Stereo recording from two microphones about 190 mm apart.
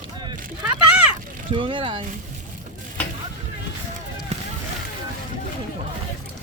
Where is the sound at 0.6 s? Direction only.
5° right (ahead or behind).